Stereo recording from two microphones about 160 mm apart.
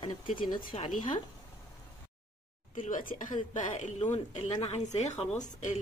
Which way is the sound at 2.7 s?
55° left (ahead or behind).